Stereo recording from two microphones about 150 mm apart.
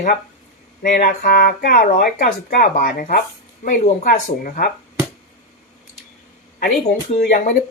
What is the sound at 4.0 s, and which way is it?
Speech, 65° left (ahead or behind).